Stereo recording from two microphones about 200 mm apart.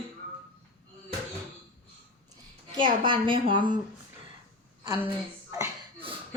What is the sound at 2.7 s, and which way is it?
A woman's voice, 25° right (ahead or behind).